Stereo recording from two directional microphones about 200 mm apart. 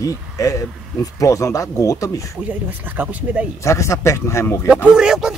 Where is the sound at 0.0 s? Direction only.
15° left (ahead or behind).